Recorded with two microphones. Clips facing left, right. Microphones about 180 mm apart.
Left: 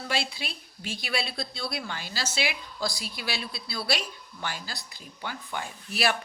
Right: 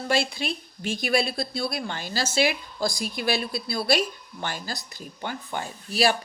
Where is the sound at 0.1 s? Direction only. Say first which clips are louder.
Right 7 dB; 45° right (ahead or behind).